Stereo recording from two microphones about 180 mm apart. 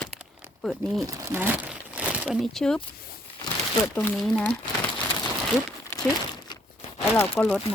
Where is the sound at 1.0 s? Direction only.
15° right (ahead or behind); by 2.8 s 5° left (ahead or behind).